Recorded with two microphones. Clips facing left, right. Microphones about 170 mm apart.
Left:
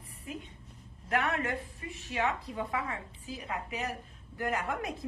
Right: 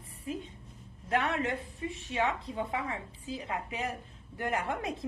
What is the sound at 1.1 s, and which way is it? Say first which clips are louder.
A woman's voice: right 1 dB; 25° right (ahead or behind).